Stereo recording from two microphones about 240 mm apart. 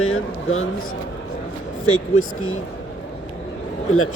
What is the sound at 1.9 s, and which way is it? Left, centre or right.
Speech, left.